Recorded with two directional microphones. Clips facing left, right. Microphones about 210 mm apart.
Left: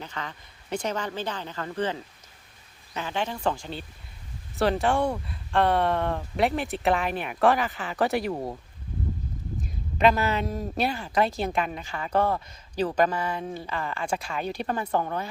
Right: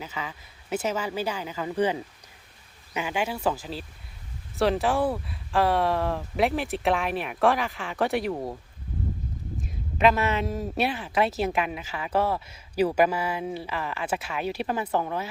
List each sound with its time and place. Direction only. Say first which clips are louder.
0.0 s speech: right 1 dB; 5° right (ahead or behind)
9.6 s speech: even; centre (ahead or behind)